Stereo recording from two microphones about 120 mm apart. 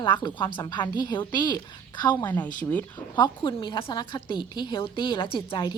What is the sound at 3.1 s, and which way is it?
A woman's voice, 40° left (ahead or behind).